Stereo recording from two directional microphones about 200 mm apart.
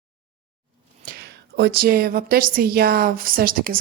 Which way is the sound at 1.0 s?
55° right (ahead or behind).